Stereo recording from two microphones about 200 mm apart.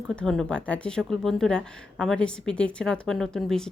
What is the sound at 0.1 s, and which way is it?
Speech, centre (ahead or behind).